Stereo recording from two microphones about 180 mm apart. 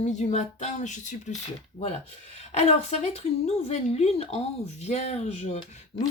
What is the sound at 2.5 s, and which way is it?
Speech, 40° left (ahead or behind).